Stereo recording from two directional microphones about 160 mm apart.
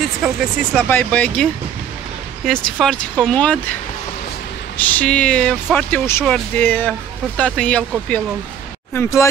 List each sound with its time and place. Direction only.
0.0 s speech: centre (ahead or behind)
0.8 s speech: 10° left (ahead or behind)
4.7 s speech: 10° left (ahead or behind)
8.9 s speech: 20° left (ahead or behind)